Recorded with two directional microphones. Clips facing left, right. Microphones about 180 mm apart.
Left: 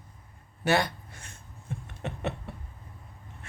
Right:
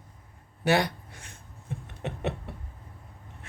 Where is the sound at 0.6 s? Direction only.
15° right (ahead or behind).